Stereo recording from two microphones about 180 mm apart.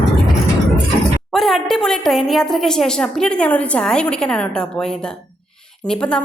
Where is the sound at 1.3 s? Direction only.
Centre (ahead or behind).